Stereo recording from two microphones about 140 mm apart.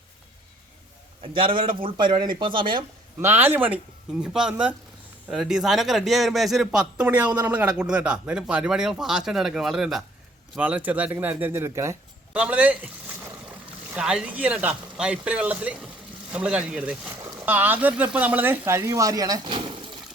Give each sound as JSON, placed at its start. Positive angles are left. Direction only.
{"t": 1.2, "sound": "a man's voice", "side_deg": -40}
{"t": 3.2, "sound": "a man's voice", "side_deg": -15}
{"t": 13.9, "sound": "a man's voice", "side_deg": -5}
{"t": 19.5, "sound": "speech", "side_deg": -40}